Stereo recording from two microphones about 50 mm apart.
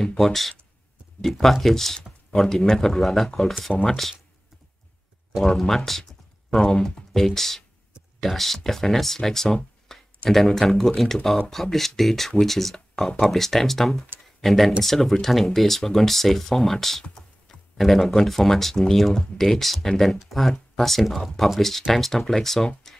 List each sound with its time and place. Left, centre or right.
0.2 s speech: centre
5.6 s speech: centre
9.9 s a sound: centre
10.3 s speech: centre